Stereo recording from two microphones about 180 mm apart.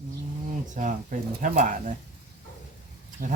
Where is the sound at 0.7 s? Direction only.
45° right (ahead or behind).